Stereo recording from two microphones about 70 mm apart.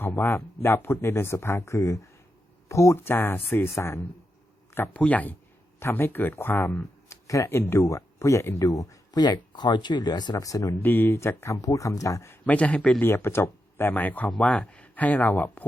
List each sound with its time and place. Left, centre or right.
0.0 s speech: left
4.9 s speech: left
6.7 s a sound: left
7.5 s speech: left
10.4 s speech: left
10.8 s speech: left
12.5 s speech: centre
13.0 s speech: left
13.9 s speech: left